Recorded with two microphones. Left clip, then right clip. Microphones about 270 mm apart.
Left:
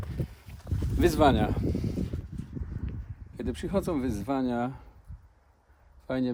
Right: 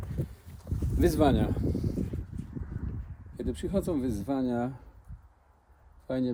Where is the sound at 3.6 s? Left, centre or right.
Centre.